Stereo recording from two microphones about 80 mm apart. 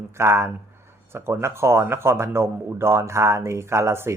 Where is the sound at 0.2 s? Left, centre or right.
Right.